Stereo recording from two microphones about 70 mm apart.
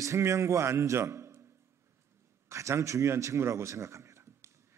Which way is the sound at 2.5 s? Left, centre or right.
Right.